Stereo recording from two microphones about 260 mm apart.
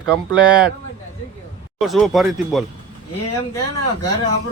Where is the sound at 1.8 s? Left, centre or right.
Centre.